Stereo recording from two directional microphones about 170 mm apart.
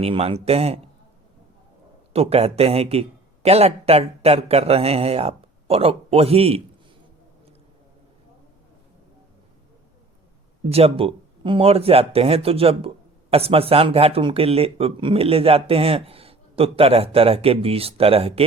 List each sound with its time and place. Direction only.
0.0 s speech: 35° right (ahead or behind)
2.1 s speech: 35° right (ahead or behind)
10.7 s speech: 35° right (ahead or behind)